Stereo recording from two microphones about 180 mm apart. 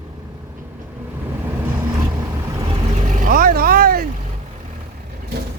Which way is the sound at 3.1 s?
50° right (ahead or behind).